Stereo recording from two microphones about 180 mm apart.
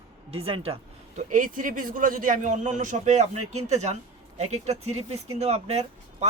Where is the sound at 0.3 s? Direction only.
30° right (ahead or behind).